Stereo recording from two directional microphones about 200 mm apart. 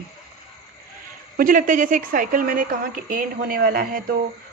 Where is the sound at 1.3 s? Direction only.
45° right (ahead or behind).